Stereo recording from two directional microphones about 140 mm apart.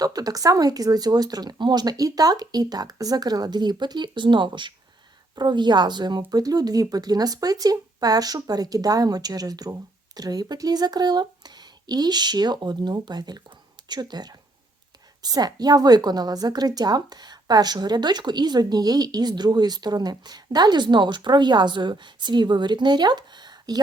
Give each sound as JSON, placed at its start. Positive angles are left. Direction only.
{"t": 0.0, "sound": "a woman's voice", "side_deg": -25}